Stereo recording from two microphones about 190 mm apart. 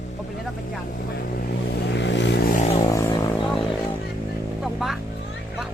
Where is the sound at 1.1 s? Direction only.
50° left (ahead or behind).